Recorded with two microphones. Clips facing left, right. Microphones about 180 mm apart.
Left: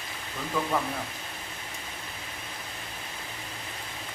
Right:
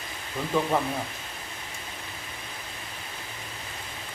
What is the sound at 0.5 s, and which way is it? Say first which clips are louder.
Speech: right 4 dB; 25° right (ahead or behind).